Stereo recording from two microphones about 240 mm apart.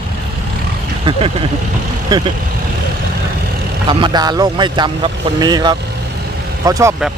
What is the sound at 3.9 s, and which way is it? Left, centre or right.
Speech, centre.